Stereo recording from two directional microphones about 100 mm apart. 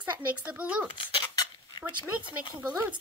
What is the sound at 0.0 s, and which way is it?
Speech, 15° right (ahead or behind).